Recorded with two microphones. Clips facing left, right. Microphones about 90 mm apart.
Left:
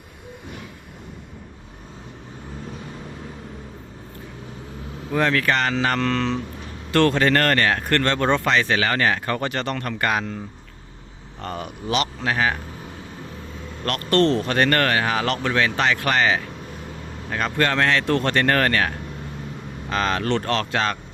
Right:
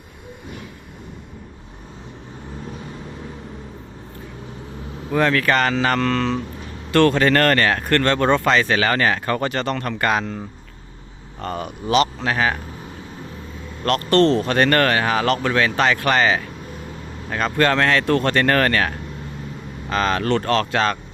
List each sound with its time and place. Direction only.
5.1 s speech: 55° right (ahead or behind)
6.9 s speech: 60° right (ahead or behind); by 10.1 s 45° right (ahead or behind)
10.1 s speech: 70° right (ahead or behind)
11.9 s speech: 40° right (ahead or behind)
13.8 s speech: 30° right (ahead or behind)
17.6 s speech: 55° right (ahead or behind)
19.9 s speech: 50° right (ahead or behind)